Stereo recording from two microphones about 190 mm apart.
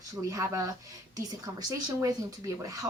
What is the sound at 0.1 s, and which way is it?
A woman's voice, 15° right (ahead or behind).